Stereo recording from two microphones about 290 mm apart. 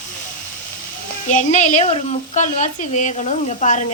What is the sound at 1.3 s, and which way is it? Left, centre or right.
Speech, left.